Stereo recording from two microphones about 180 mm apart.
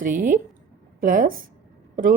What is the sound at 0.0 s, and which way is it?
A woman's voice, 50° right (ahead or behind).